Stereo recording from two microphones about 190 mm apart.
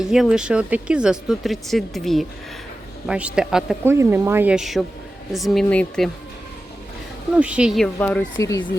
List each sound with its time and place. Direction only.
0.0 s speech: 5° right (ahead or behind)
7.3 s speech: 5° right (ahead or behind)
7.9 s speech: 10° left (ahead or behind)